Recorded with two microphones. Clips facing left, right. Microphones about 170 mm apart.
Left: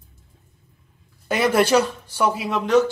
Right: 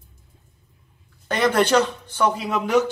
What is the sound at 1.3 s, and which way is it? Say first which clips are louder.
Speech: left 1 dB; 10° left (ahead or behind).